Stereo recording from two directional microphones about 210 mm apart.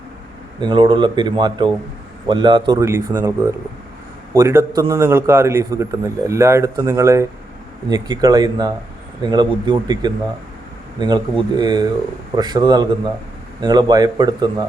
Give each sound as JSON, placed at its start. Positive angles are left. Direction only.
{"t": 0.6, "sound": "a man's voice", "side_deg": -20}